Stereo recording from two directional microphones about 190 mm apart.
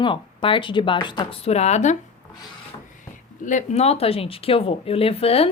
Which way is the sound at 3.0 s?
40° left (ahead or behind).